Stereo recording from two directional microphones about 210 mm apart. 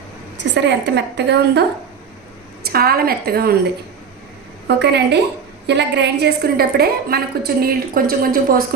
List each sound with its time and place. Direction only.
0.5 s a woman's voice: 55° right (ahead or behind)
2.6 s a woman's voice: 45° right (ahead or behind)
4.8 s a woman's voice: 55° right (ahead or behind)